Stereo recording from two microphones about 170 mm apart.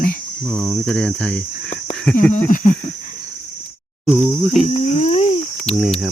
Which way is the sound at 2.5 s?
45° left (ahead or behind).